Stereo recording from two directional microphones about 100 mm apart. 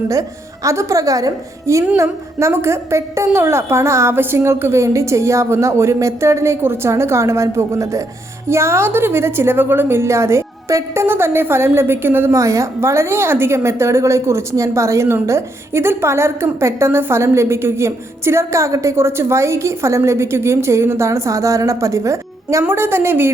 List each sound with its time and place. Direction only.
0.1 s a woman's voice: 35° right (ahead or behind)